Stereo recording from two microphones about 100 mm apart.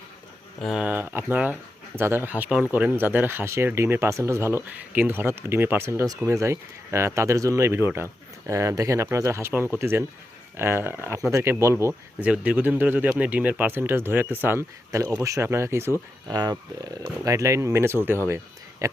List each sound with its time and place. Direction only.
0.6 s speech: 5° right (ahead or behind)
0.9 s speech: 20° right (ahead or behind)
12.2 s speech: 15° right (ahead or behind)
15.0 s speech: 35° right (ahead or behind)
16.3 s speech: 40° right (ahead or behind)